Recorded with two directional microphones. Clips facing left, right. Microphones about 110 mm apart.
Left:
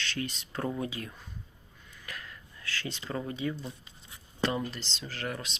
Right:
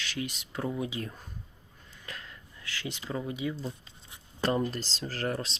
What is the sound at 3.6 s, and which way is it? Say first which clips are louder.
Speech: right 4 dB; 30° right (ahead or behind).